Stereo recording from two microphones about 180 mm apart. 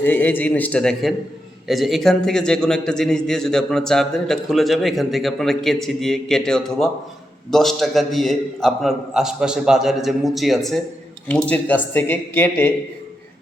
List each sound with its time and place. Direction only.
0.0 s a man's voice: 10° left (ahead or behind)